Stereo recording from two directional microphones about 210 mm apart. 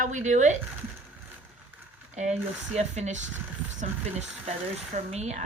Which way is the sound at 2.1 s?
35° right (ahead or behind).